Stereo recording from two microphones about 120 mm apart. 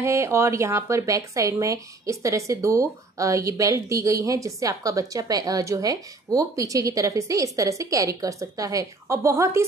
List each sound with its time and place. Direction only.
0.0 s speech: 25° right (ahead or behind)